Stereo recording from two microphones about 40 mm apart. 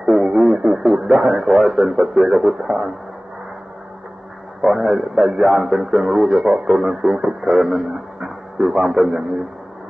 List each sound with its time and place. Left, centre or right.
0.0 s radio: centre
0.9 s speech: centre
2.6 s speech: centre
4.6 s speech: centre
7.4 s a man's voice: centre